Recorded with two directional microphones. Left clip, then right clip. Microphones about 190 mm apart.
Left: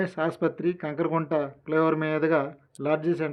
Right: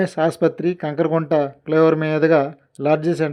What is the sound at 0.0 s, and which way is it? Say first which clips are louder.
Speech: right 8 dB; 35° right (ahead or behind).